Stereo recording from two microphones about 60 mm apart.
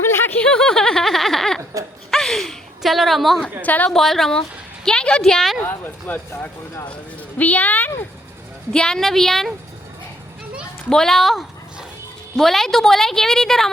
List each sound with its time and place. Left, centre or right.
0.0 s a sound: left
0.4 s giggle: centre
2.0 s a sound: centre
3.6 s a woman's voice: left
3.9 s a woman's voice: centre
4.9 s a sound: centre
5.2 s a woman's voice: centre
5.6 s speech: left
8.7 s a woman's voice: centre
10.8 s a woman's voice: centre